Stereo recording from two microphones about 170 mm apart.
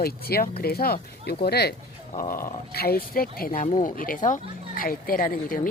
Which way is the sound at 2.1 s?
55° left (ahead or behind).